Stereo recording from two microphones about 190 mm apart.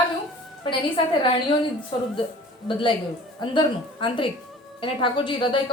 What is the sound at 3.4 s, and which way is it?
A woman's voice, 25° left (ahead or behind).